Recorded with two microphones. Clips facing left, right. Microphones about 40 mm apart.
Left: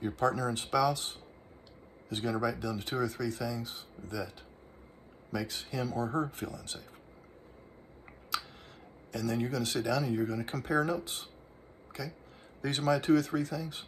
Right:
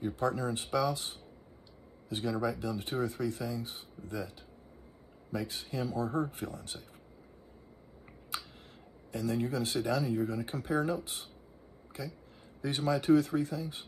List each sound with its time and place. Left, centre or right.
0.0 s speech: left
5.3 s speech: left
9.1 s speech: left